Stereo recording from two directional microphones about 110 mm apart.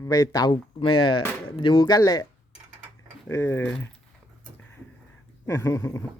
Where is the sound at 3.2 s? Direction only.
25° left (ahead or behind).